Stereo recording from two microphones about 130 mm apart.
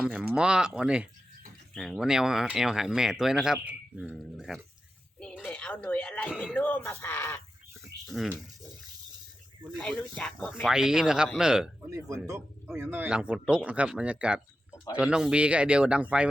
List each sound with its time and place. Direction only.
0.0 s speech: 5° right (ahead or behind)
5.5 s speech: 10° left (ahead or behind)
8.0 s speech: centre (ahead or behind)
9.7 s speech: 5° left (ahead or behind)
11.9 s speech: 25° right (ahead or behind)